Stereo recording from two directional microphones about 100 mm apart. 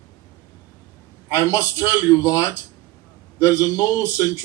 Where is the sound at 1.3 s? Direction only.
35° left (ahead or behind).